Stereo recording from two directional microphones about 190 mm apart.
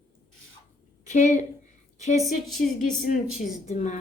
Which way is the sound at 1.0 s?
40° left (ahead or behind).